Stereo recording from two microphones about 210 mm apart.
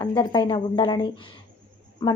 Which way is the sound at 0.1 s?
20° left (ahead or behind).